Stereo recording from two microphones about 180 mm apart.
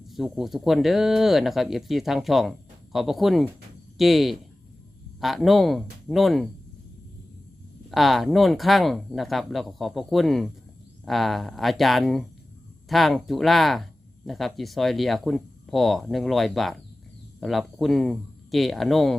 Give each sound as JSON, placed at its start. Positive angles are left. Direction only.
{"t": 0.1, "sound": "speech", "side_deg": 0}
{"t": 7.9, "sound": "speech", "side_deg": 0}